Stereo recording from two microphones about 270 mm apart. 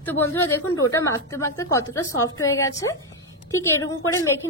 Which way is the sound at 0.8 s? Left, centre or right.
Centre.